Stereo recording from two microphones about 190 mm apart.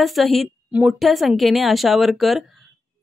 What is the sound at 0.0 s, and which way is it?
A woman's voice, centre (ahead or behind).